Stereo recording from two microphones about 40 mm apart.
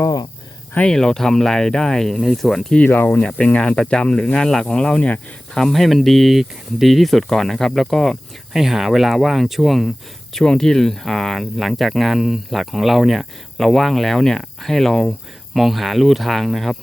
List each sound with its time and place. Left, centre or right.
0.9 s speech: centre
2.8 s speech: left
3.1 s speech: left
4.9 s speech: left
5.5 s speech: centre
8.5 s speech: centre
10.3 s speech: centre
15.5 s speech: centre